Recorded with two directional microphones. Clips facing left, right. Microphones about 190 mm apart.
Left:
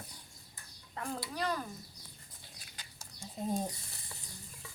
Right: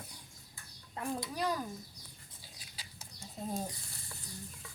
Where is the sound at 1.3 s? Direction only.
10° right (ahead or behind).